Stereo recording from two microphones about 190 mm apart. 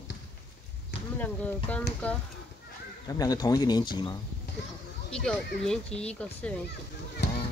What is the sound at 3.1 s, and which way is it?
Speech, 20° left (ahead or behind).